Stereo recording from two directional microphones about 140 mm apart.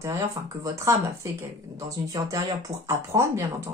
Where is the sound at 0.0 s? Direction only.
25° right (ahead or behind).